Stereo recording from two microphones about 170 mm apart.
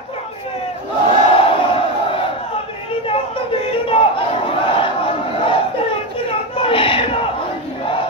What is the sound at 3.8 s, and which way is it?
Crowd, 35° left (ahead or behind).